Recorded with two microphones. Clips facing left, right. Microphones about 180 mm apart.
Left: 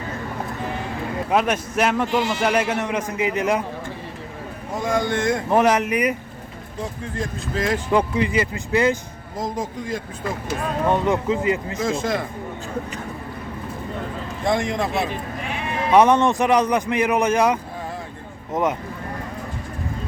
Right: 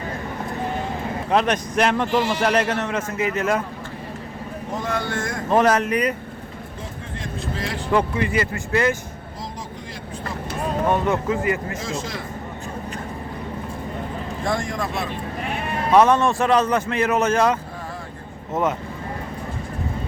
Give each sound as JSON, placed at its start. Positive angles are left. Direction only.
{"t": 1.3, "sound": "a man's voice", "side_deg": 5}
{"t": 4.7, "sound": "a man's voice", "side_deg": 10}
{"t": 7.9, "sound": "a man's voice", "side_deg": 15}
{"t": 9.4, "sound": "speech", "side_deg": 45}
{"t": 10.9, "sound": "speech", "side_deg": 15}
{"t": 11.8, "sound": "speech", "side_deg": 55}
{"t": 14.4, "sound": "speech", "side_deg": 20}
{"t": 15.9, "sound": "a man's voice", "side_deg": 15}